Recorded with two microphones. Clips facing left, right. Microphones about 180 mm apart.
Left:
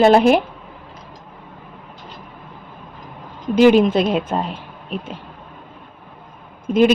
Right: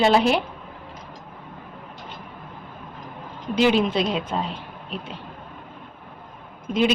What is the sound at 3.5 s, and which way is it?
Speech, 50° left (ahead or behind).